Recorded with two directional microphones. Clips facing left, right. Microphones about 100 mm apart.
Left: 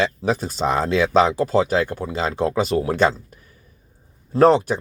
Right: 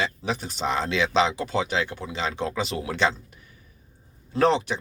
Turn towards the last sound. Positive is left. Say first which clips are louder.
# left 7 dB
turn(degrees=45)  # may be behind; listen again after turning